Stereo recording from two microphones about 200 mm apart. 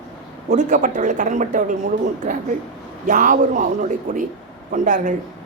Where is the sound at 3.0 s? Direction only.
40° right (ahead or behind).